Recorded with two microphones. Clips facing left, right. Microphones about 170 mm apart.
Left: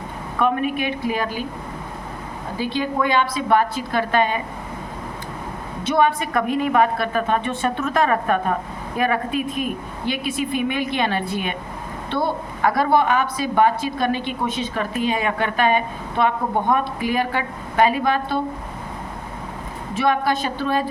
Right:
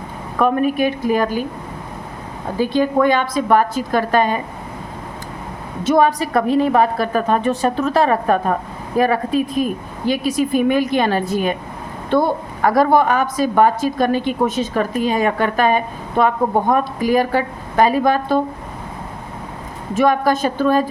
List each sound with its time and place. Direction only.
0.3 s a woman's voice: 40° right (ahead or behind)
2.6 s a woman's voice: 45° right (ahead or behind)
5.8 s a woman's voice: 40° right (ahead or behind)
19.9 s a woman's voice: 45° right (ahead or behind)